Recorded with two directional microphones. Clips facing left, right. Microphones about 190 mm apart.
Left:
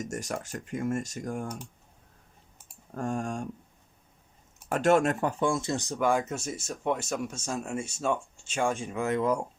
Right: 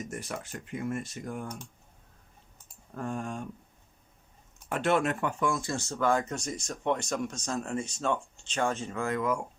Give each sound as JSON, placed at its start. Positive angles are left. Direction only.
{"t": 0.0, "sound": "speech", "side_deg": 45}
{"t": 2.9, "sound": "speech", "side_deg": 45}
{"t": 4.7, "sound": "speech", "side_deg": 45}
{"t": 5.4, "sound": "speech", "side_deg": 25}